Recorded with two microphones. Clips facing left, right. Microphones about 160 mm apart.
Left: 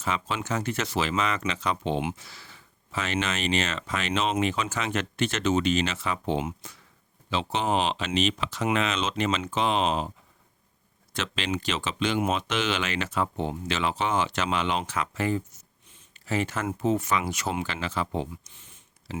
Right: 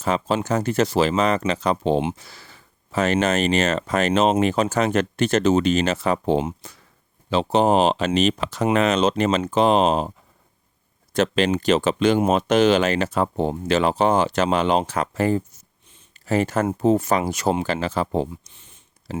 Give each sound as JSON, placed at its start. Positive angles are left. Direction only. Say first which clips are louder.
{"t": 0.0, "sound": "speech", "louder": "right 8 dB", "side_deg": -40}
{"t": 11.1, "sound": "speech", "louder": "right 11 dB", "side_deg": -40}